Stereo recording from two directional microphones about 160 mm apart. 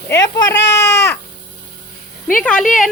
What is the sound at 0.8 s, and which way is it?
Crow, 20° left (ahead or behind).